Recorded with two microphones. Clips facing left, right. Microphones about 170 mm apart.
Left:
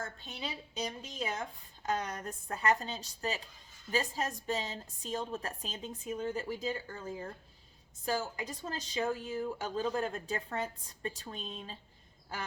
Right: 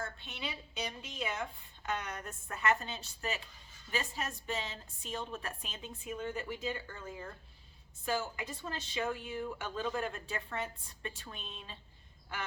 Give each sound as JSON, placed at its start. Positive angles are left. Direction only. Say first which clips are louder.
{"t": 0.0, "sound": "a woman's voice", "louder": "left 1 dB", "side_deg": 40}